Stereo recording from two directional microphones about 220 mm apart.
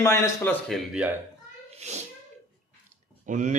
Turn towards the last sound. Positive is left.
turn(degrees=-35)  # may be behind; listen again after turning